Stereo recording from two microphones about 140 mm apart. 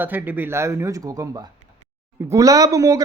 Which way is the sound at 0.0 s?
15° right (ahead or behind).